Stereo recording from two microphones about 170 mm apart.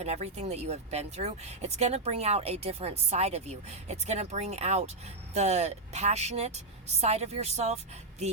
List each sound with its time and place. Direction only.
0.0 s speech: 40° right (ahead or behind)